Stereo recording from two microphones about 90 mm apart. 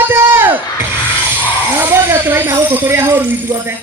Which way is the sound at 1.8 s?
25° right (ahead or behind).